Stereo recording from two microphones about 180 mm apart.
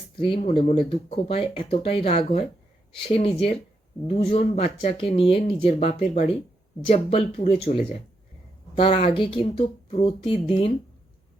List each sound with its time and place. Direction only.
0.2 s speech: 30° left (ahead or behind)
8.8 s speech: 40° left (ahead or behind)
9.1 s speech: 30° left (ahead or behind)